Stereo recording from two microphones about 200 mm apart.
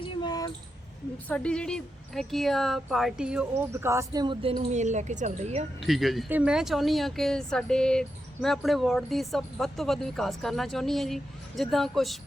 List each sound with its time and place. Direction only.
0.0 s a sound: 20° left (ahead or behind)
1.3 s speech: 5° left (ahead or behind); by 5.6 s 35° right (ahead or behind)
5.8 s speech: centre (ahead or behind)